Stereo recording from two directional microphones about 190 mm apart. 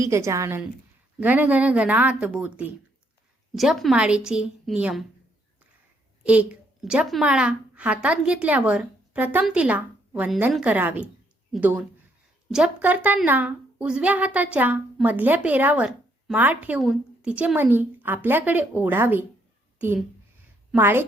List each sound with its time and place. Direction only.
0.0 s a woman's voice: 15° right (ahead or behind)
6.2 s a woman's voice: 5° right (ahead or behind)